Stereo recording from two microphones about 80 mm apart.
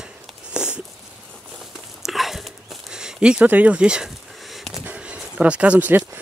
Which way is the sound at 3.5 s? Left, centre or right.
Centre.